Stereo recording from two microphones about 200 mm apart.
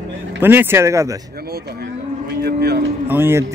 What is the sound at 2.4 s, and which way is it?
Speech, 55° right (ahead or behind).